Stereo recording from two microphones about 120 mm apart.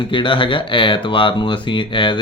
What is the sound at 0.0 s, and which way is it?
Speech, 40° left (ahead or behind).